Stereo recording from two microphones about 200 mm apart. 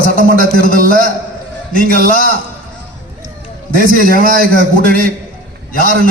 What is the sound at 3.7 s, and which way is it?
A man's voice, 45° right (ahead or behind).